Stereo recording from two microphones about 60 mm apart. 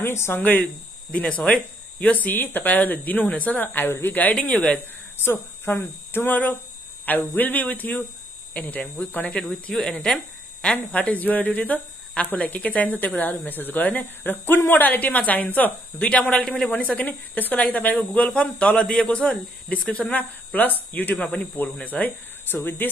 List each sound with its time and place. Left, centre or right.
0.0 s speech: left
0.4 s speech: left
5.2 s speech: left
7.1 s speech: left
9.4 s speech: centre
16.8 s speech: left
21.2 s speech: centre; by 22.8 s left